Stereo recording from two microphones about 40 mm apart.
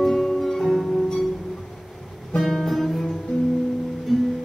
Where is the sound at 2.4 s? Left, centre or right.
Centre.